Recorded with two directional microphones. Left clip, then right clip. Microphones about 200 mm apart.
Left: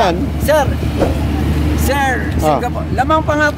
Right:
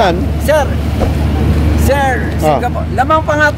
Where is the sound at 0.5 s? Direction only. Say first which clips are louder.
Right 1 dB; 25° left (ahead or behind).